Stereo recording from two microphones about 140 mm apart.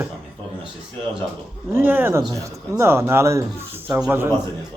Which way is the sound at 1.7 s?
15° right (ahead or behind).